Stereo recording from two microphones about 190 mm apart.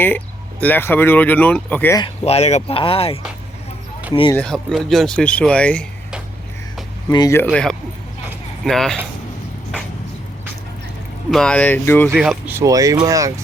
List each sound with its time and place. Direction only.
0.6 s speech: 10° left (ahead or behind)
2.0 s speech: 30° left (ahead or behind)
4.4 s speech: centre (ahead or behind)
7.1 s speech: 20° left (ahead or behind)
7.4 s speech: 5° left (ahead or behind)
11.3 s speech: 5° left (ahead or behind)
12.1 s speech: 5° right (ahead or behind)